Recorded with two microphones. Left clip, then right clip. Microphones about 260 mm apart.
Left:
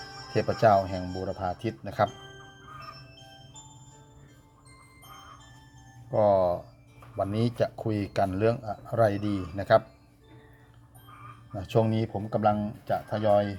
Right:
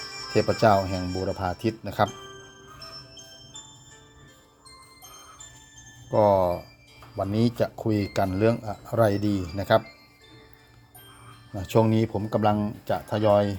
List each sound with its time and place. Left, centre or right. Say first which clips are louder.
0.0 s music: right 6 dB; right
0.3 s speech: right 2 dB; centre
6.1 s speech: right 2 dB; centre
11.5 s speech: right 4 dB; centre